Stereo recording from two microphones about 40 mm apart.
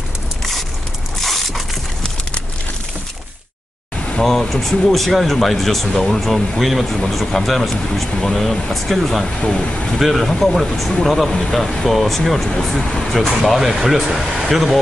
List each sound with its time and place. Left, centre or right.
1.2 s a sound: centre
4.2 s speech: centre
9.4 s speech: centre
9.9 s speech: centre
13.5 s speech: centre